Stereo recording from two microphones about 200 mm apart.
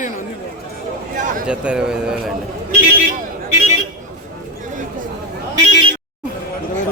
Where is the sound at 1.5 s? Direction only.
5° right (ahead or behind).